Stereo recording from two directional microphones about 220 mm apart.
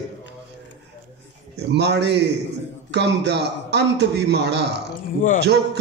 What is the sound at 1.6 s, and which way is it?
Speech, 50° right (ahead or behind).